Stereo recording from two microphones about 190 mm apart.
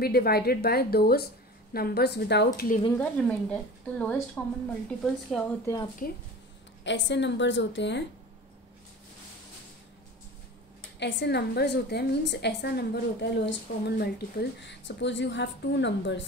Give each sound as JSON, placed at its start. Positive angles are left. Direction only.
{"t": 0.0, "sound": "a woman's voice", "side_deg": 55}
{"t": 3.0, "sound": "a woman's voice", "side_deg": 5}
{"t": 6.8, "sound": "a woman's voice", "side_deg": 70}
{"t": 11.0, "sound": "a woman's voice", "side_deg": 65}